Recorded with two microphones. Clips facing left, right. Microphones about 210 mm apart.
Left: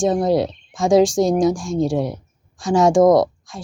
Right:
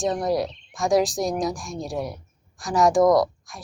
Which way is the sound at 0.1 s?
25° left (ahead or behind).